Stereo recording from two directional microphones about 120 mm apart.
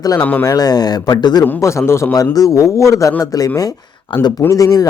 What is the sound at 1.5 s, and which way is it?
Speech, 25° left (ahead or behind).